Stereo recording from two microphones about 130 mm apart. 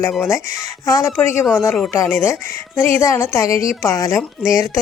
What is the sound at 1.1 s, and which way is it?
Speech, 15° left (ahead or behind).